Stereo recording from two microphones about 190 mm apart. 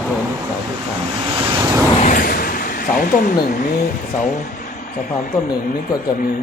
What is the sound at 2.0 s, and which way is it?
Speech, 45° left (ahead or behind).